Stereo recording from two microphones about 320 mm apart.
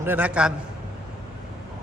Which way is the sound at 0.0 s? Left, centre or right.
Centre.